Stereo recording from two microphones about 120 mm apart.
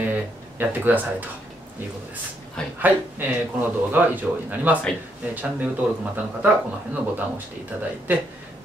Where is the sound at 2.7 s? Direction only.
15° right (ahead or behind).